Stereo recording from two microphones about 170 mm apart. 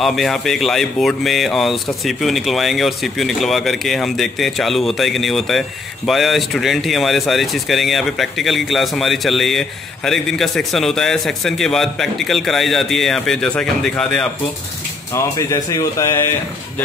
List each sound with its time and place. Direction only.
0.0 s speech: centre (ahead or behind)
15.1 s speech: 20° left (ahead or behind)